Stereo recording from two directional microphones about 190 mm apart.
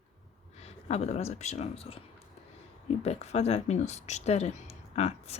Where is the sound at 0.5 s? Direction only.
35° left (ahead or behind).